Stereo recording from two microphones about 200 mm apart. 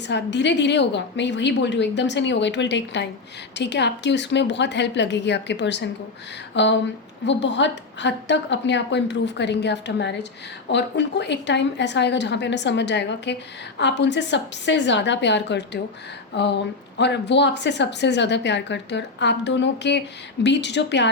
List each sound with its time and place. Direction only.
0.1 s a woman's voice: 60° left (ahead or behind)